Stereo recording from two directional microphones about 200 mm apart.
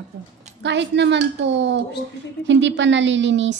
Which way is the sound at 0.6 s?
60° right (ahead or behind).